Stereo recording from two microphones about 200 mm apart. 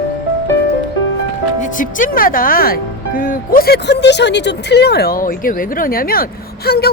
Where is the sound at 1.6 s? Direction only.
40° left (ahead or behind).